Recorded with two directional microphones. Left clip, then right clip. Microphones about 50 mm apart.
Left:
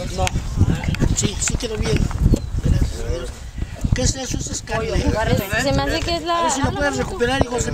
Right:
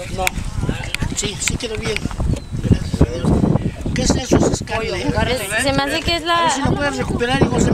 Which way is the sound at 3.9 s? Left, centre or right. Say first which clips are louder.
Right 7 dB; centre.